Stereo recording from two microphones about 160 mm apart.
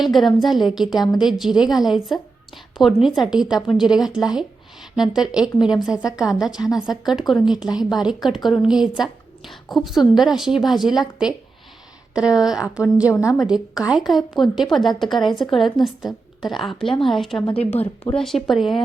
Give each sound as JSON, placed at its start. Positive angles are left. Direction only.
{"t": 0.0, "sound": "a woman's voice", "side_deg": 0}
{"t": 13.1, "sound": "a woman's voice", "side_deg": 20}
{"t": 13.4, "sound": "a woman's voice", "side_deg": -5}
{"t": 17.5, "sound": "a woman's voice", "side_deg": 40}
{"t": 18.2, "sound": "a woman's voice", "side_deg": 0}